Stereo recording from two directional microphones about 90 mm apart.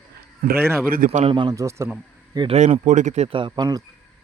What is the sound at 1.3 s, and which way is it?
Speech, 65° right (ahead or behind).